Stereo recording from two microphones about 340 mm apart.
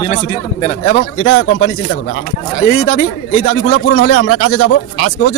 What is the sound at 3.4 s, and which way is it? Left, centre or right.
Speech, left.